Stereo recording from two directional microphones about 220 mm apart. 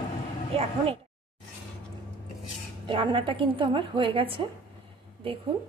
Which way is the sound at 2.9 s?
25° right (ahead or behind).